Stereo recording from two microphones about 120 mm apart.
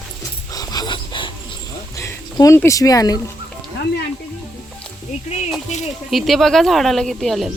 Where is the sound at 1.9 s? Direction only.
25° left (ahead or behind).